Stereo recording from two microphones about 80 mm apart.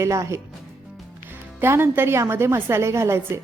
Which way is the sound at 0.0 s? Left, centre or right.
Right.